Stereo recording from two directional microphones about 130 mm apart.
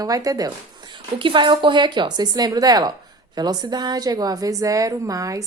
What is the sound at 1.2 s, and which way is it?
A woman's voice, 40° right (ahead or behind).